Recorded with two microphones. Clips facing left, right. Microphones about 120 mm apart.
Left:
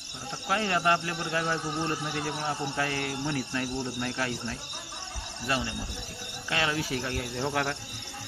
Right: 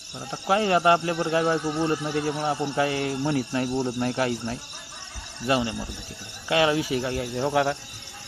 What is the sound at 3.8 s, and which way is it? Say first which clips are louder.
Speech: right 7 dB; 40° right (ahead or behind).